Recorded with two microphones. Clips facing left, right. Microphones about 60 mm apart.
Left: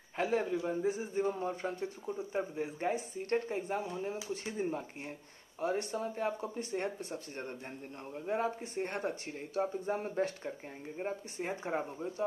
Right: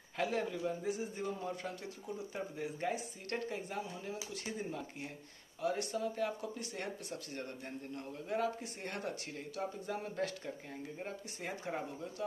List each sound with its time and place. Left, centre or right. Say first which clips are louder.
0.2 s speech: left 3 dB; left